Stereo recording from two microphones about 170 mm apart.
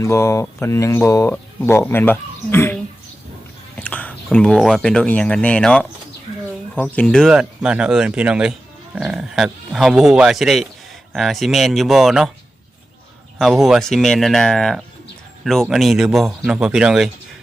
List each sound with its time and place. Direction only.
0.0 s speech: 15° left (ahead or behind)
3.8 s speech: 10° left (ahead or behind)
6.9 s speech: 5° left (ahead or behind)
13.4 s speech: centre (ahead or behind)